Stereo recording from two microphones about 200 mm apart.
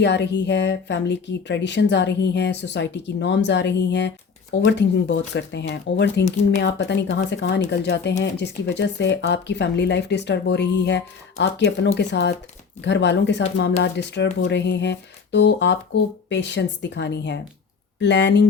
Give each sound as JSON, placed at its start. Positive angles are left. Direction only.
{"t": 0.0, "sound": "speech", "side_deg": 60}